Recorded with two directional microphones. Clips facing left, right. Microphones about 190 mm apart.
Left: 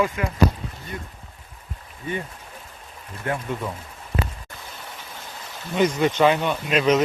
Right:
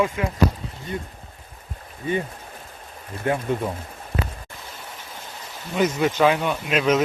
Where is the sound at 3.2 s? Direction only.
25° right (ahead or behind).